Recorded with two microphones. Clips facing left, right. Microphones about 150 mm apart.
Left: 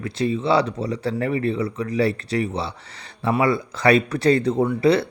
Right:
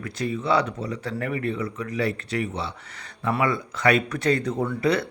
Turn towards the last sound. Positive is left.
turn(degrees=30)  # may be behind; listen again after turning